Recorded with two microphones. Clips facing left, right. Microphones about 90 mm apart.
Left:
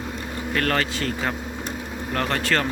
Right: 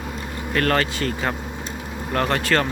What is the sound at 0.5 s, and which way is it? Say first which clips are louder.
Speech: right 3 dB; centre (ahead or behind).